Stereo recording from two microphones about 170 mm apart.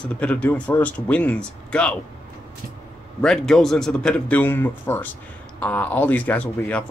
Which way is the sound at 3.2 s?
5° left (ahead or behind).